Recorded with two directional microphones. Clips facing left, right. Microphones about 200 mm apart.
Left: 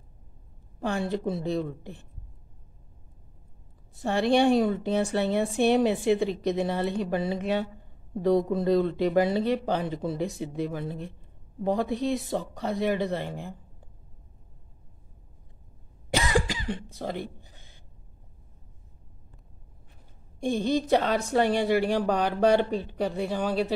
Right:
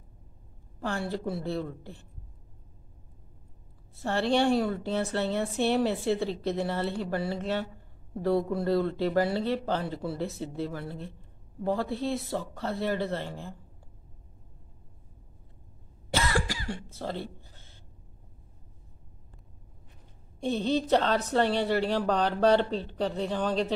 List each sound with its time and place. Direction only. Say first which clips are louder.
0.7 s a woman's voice: left 4 dB; 20° left (ahead or behind)
3.9 s a woman's voice: left 3 dB; 15° left (ahead or behind)
16.1 s cough: left 3 dB; 15° left (ahead or behind)
20.3 s a woman's voice: left 2 dB; 10° left (ahead or behind)